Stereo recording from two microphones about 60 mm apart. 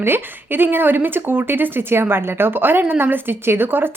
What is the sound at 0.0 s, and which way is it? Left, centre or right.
A woman's voice, right.